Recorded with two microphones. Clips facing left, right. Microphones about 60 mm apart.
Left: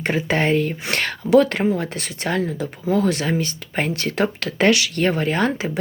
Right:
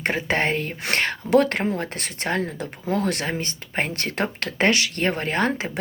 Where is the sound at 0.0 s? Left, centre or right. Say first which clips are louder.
Left 2 dB; right.